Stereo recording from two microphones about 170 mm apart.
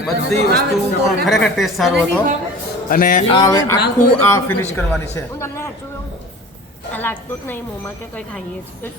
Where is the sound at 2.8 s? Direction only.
55° left (ahead or behind).